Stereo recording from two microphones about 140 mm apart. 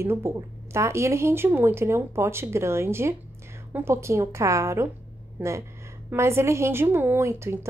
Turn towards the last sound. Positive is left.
turn(degrees=-20)  # may be behind; listen again after turning